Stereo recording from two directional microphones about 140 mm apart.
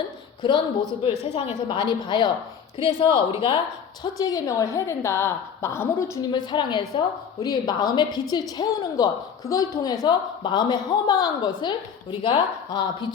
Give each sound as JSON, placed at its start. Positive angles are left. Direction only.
{"t": 0.4, "sound": "a woman's voice", "side_deg": 35}
{"t": 4.0, "sound": "a woman's voice", "side_deg": 25}
{"t": 6.3, "sound": "a woman's voice", "side_deg": 35}